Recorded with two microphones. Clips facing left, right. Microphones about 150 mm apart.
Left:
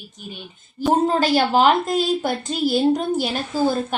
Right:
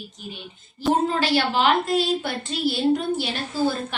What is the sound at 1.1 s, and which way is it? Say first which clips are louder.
A woman's voice: left 4 dB; 45° left (ahead or behind).